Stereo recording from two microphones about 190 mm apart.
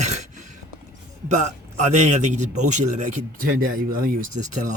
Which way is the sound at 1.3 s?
40° right (ahead or behind).